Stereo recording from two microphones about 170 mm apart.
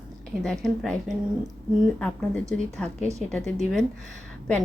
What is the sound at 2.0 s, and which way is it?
Speech, 5° left (ahead or behind).